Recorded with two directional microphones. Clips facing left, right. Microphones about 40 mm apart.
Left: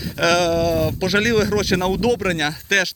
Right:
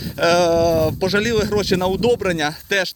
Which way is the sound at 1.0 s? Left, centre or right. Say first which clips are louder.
Even; left.